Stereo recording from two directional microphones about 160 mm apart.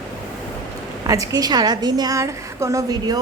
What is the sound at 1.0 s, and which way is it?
A woman's voice, 20° right (ahead or behind).